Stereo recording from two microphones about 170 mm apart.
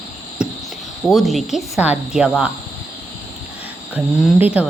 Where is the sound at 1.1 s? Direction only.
Centre (ahead or behind).